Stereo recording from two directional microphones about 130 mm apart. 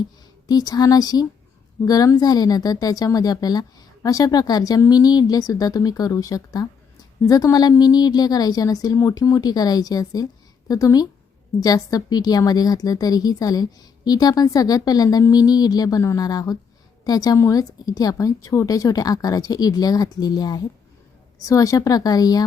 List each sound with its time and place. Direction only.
0.4 s speech: 30° left (ahead or behind)